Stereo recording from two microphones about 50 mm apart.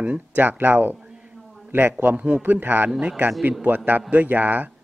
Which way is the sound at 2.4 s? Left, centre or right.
Right.